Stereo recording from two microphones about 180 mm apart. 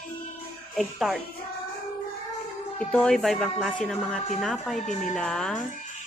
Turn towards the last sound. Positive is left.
turn(degrees=5)  # may be behind; listen again after turning